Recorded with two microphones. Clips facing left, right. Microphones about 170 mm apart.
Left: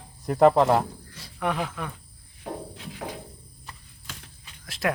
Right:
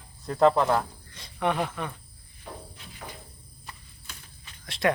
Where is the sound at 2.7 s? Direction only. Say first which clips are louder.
Left 8 dB; 85° left.